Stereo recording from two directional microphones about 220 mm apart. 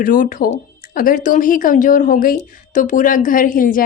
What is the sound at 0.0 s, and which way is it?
Speech, 40° left (ahead or behind).